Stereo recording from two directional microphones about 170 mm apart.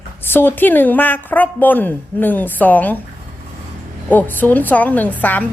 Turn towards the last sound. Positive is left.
turn(degrees=10)  # may be behind; listen again after turning